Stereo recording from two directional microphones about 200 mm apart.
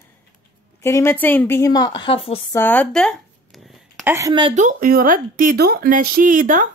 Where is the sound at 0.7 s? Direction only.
15° left (ahead or behind).